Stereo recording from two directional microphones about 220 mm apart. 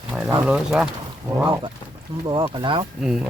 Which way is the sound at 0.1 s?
5° right (ahead or behind).